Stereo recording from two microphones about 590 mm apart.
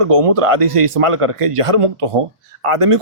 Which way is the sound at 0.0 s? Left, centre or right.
Right.